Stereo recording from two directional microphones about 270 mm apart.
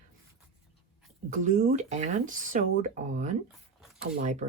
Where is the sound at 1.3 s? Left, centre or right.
Right.